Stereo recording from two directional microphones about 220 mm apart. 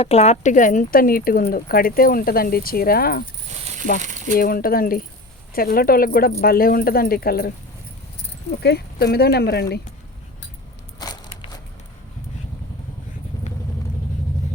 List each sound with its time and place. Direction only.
0.0 s speech: 30° left (ahead or behind)
4.0 s speech: 35° right (ahead or behind)
4.4 s speech: 40° left (ahead or behind)
11.0 s crushing: 20° left (ahead or behind)
13.3 s vehicle: 15° left (ahead or behind)